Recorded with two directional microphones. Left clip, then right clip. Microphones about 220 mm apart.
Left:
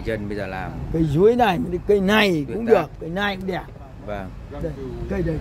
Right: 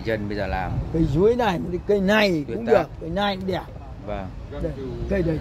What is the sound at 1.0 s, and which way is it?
Speech, 45° left (ahead or behind).